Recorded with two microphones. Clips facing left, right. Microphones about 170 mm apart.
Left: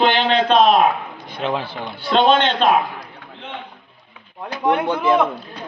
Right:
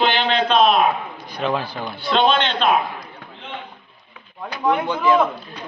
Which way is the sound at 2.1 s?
55° left (ahead or behind).